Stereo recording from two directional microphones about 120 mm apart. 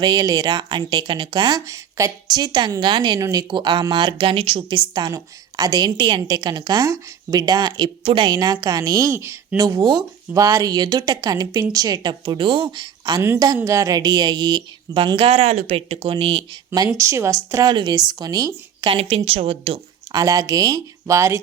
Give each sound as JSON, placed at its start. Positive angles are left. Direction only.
{"t": 0.0, "sound": "speech", "side_deg": -35}
{"t": 8.0, "sound": "speech", "side_deg": -45}
{"t": 15.3, "sound": "speech", "side_deg": -55}
{"t": 17.0, "sound": "speech", "side_deg": -25}
{"t": 18.9, "sound": "speech", "side_deg": -55}
{"t": 20.1, "sound": "speech", "side_deg": -30}